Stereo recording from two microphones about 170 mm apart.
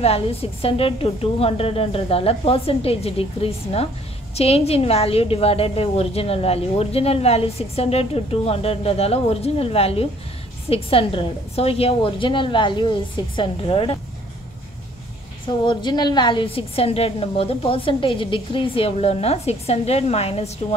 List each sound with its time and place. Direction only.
0.0 s a woman's voice: 35° left (ahead or behind)
15.4 s a woman's voice: 25° left (ahead or behind)